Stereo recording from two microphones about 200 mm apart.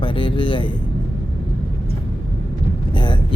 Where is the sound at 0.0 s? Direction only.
25° left (ahead or behind).